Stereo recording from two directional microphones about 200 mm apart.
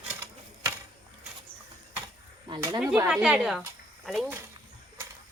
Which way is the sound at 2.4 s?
20° right (ahead or behind).